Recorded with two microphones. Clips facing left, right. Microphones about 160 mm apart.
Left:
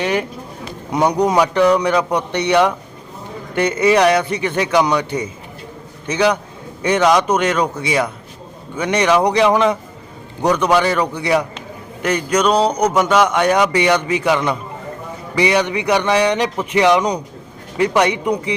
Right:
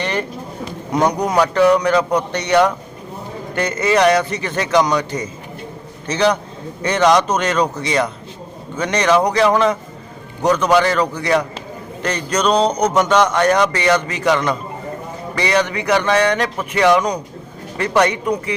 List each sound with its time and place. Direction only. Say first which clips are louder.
0.0 s speech: left 3 dB; 10° left (ahead or behind)